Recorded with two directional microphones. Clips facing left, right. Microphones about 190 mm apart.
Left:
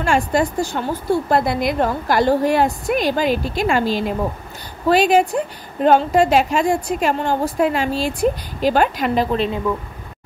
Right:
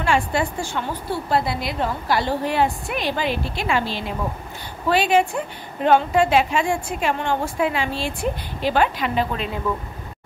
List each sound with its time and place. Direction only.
0.0 s a woman's voice: 45° left (ahead or behind)